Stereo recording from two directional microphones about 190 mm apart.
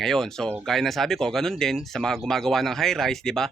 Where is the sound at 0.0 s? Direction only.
Centre (ahead or behind).